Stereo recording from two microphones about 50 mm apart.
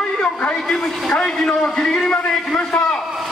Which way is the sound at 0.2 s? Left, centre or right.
Left.